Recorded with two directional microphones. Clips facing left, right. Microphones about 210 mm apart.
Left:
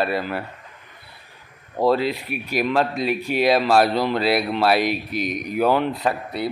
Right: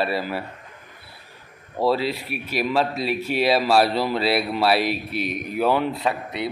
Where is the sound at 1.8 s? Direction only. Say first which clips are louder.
Left 2 dB; centre (ahead or behind).